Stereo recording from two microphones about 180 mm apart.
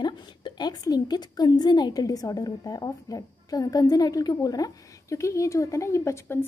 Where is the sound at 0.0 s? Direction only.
25° left (ahead or behind).